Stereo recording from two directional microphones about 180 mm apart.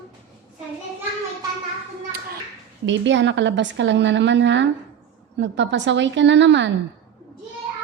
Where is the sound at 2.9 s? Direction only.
85° right.